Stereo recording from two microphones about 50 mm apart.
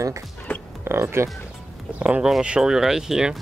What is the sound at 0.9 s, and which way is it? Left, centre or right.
Speech, right.